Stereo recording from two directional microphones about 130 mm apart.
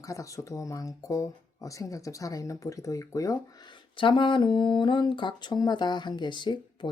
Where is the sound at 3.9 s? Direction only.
40° left (ahead or behind).